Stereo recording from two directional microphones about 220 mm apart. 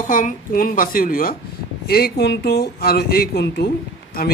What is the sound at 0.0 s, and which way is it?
Speech, 40° left (ahead or behind).